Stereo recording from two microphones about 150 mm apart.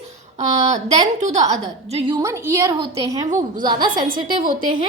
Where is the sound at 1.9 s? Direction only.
40° right (ahead or behind).